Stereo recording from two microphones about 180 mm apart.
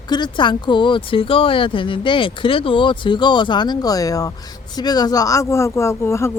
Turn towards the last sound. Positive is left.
turn(degrees=15)  # may be behind; listen again after turning